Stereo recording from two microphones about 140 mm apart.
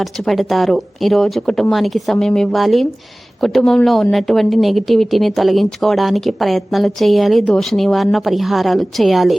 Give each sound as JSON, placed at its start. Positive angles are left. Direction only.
{"t": 0.0, "sound": "speech", "side_deg": 0}